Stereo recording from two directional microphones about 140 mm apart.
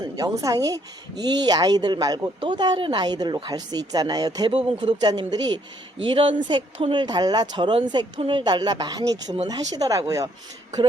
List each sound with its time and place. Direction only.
0.0 s a woman's voice: 25° right (ahead or behind)
4.5 s speech: 45° right (ahead or behind)
4.9 s speech: 30° right (ahead or behind)